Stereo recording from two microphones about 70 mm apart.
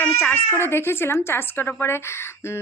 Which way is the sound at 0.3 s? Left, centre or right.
Left.